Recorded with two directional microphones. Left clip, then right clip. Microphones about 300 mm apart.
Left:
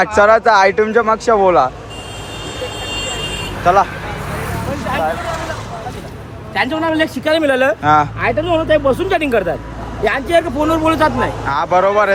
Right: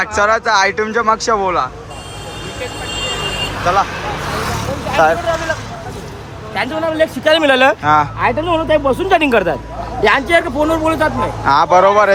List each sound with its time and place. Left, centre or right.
0.0 s a man's voice: centre
3.7 s a man's voice: centre
6.5 s a man's voice: centre
7.3 s speech: centre
7.8 s a man's voice: centre
8.2 s a man's voice: centre